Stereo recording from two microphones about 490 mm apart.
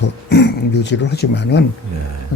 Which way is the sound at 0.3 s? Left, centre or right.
Left.